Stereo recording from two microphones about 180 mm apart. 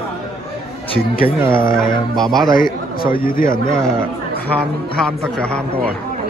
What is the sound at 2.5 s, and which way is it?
A man's voice, 55° left (ahead or behind).